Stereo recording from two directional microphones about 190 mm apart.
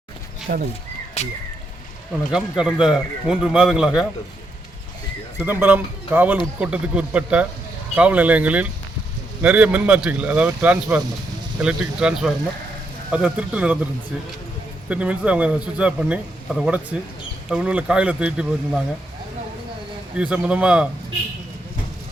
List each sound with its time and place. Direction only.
0.4 s speech: 50° right (ahead or behind)
1.2 s a sound: 35° left (ahead or behind)
2.3 s a man's voice: 5° right (ahead or behind)
5.4 s a man's voice: 10° right (ahead or behind)
14.8 s a man's voice: 5° right (ahead or behind)
20.1 s a man's voice: 5° right (ahead or behind)